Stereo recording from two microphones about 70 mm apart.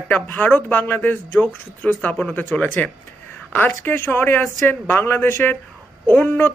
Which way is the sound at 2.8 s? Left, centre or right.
Left.